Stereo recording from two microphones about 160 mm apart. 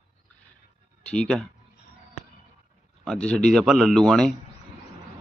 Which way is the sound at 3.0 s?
5° left (ahead or behind).